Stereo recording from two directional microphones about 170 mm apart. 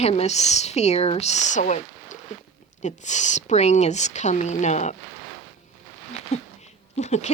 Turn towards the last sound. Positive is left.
turn(degrees=40)  # may be behind; listen again after turning